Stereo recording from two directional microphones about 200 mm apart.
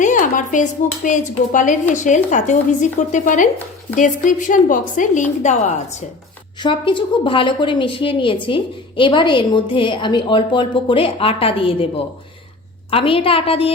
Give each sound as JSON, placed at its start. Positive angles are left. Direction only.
{"t": 0.0, "sound": "speech", "side_deg": 40}
{"t": 6.6, "sound": "a woman's voice", "side_deg": 25}
{"t": 12.9, "sound": "a woman's voice", "side_deg": 25}